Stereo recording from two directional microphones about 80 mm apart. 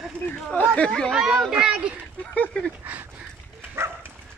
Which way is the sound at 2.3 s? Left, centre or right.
Centre.